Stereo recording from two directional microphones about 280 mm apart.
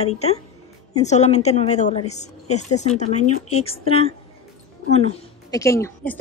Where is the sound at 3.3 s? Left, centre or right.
Left.